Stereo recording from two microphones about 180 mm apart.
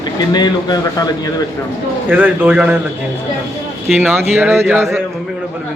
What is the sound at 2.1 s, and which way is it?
Speech, 10° right (ahead or behind).